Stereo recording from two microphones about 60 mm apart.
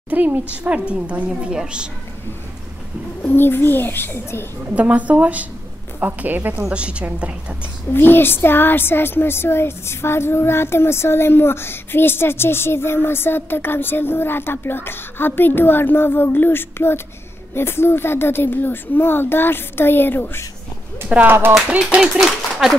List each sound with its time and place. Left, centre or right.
0.1 s a woman's voice: right
3.2 s speech: left
4.7 s a woman's voice: right
6.7 s a woman's voice: centre
7.9 s speech: left
21.3 s speech: right
21.6 s speech: centre